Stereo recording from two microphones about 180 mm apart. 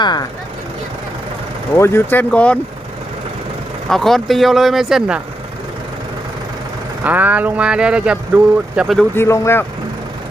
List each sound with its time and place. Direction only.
0.0 s speech: 25° left (ahead or behind)
1.7 s speech: 15° left (ahead or behind)
3.8 s speech: centre (ahead or behind)
7.0 s speech: 10° right (ahead or behind)
9.1 s speech: 15° left (ahead or behind)